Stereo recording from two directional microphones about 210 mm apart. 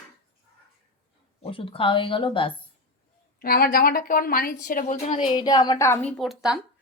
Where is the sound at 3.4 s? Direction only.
45° left (ahead or behind).